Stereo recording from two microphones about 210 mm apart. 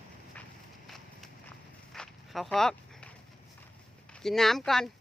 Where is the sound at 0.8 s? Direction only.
Centre (ahead or behind).